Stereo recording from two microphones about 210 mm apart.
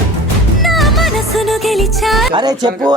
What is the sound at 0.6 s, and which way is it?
Music, centre (ahead or behind).